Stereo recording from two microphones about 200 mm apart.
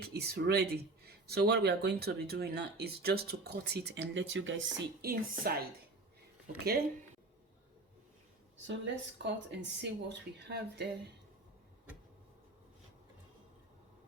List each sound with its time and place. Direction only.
0.0 s speech: 55° right (ahead or behind)
5.0 s a woman's voice: 50° right (ahead or behind)
6.7 s a woman's voice: 55° right (ahead or behind)
8.6 s speech: 65° right (ahead or behind)